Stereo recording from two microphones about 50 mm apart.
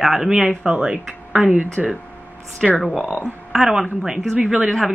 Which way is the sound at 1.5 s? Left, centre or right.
Right.